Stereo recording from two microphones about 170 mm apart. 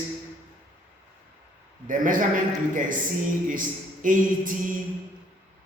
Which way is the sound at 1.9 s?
50° right (ahead or behind).